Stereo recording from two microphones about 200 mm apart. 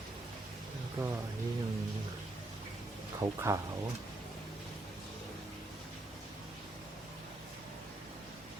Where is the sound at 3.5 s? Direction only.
15° right (ahead or behind).